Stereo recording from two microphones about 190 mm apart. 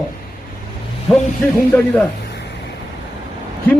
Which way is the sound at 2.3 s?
65° left (ahead or behind).